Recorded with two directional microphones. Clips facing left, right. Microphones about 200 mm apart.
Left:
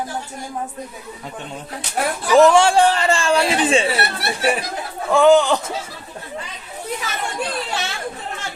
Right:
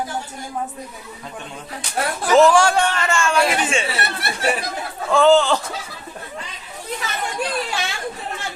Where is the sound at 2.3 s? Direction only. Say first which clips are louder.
Left 1 dB; 20° left (ahead or behind).